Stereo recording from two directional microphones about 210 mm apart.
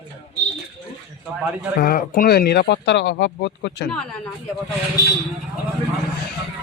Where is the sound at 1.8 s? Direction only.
45° left (ahead or behind).